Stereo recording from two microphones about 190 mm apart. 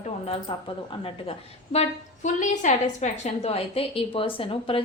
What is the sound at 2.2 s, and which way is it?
A woman's voice, 40° left (ahead or behind).